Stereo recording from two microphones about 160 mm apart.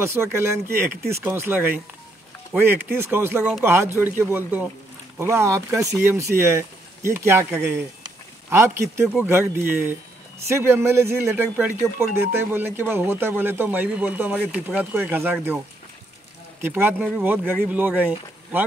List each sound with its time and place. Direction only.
0.0 s speech: 15° right (ahead or behind)
16.6 s speech: 15° right (ahead or behind)